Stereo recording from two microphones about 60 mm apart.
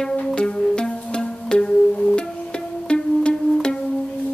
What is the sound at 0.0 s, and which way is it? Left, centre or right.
Music, centre.